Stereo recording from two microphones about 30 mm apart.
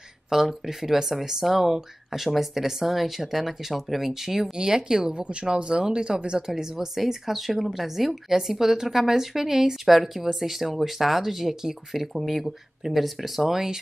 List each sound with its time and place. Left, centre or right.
0.3 s a woman's voice: centre
4.6 s speech: right
5.1 s a woman's voice: right; by 6.9 s centre
7.0 s a woman's voice: centre
13.5 s a woman's voice: centre